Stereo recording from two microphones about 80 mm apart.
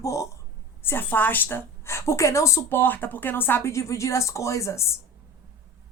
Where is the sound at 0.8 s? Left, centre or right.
Left.